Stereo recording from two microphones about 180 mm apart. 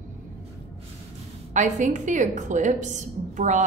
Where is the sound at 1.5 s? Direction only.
45° right (ahead or behind).